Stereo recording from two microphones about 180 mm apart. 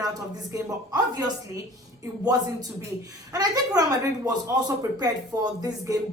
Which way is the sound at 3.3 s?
20° right (ahead or behind).